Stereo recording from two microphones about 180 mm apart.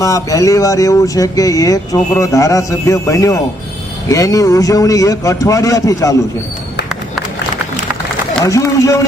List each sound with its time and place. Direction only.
0.0 s a man's voice: 20° left (ahead or behind)
8.4 s speech: 20° left (ahead or behind)